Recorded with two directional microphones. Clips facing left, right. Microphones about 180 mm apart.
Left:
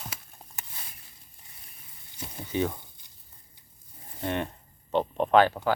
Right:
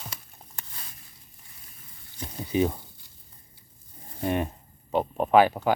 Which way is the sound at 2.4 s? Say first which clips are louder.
Right 4 dB; 15° right (ahead or behind).